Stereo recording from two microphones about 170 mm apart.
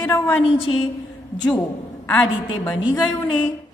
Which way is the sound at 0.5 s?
35° left (ahead or behind).